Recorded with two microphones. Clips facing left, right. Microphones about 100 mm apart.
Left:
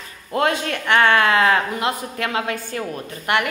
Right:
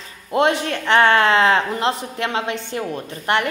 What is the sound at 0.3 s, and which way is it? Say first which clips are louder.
A woman's voice: right 2 dB; 20° right (ahead or behind).